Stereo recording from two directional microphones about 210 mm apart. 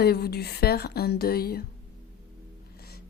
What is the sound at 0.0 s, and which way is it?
A woman's voice, 50° left (ahead or behind).